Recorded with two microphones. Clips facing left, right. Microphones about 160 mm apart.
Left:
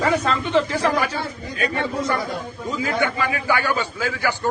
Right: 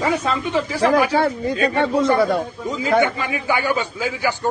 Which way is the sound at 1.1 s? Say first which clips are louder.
Right 10 dB; 60° right (ahead or behind).